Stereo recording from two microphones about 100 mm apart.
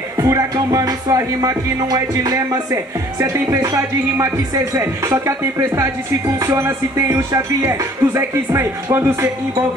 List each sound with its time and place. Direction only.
0.2 s music: 35° right (ahead or behind)